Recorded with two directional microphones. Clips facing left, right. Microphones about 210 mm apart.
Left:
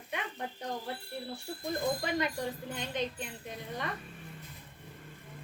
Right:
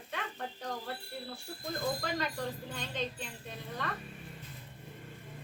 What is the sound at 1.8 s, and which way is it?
Speech, 20° left (ahead or behind).